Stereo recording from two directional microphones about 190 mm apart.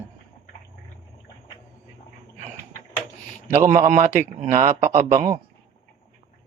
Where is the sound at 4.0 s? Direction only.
40° right (ahead or behind).